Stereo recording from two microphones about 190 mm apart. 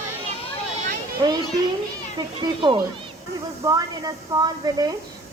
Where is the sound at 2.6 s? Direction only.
25° right (ahead or behind).